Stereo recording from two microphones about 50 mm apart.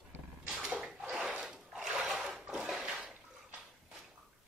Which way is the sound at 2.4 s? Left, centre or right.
Centre.